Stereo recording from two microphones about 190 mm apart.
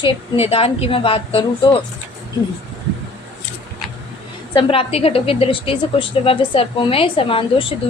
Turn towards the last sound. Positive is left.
turn(degrees=30)  # may be behind; listen again after turning